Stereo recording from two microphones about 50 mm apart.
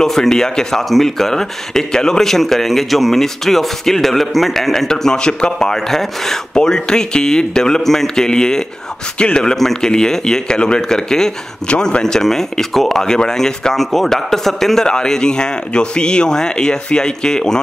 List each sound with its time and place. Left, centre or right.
0.0 s speech: centre
9.6 s speech: centre
12.0 s speech: centre
14.9 s speech: centre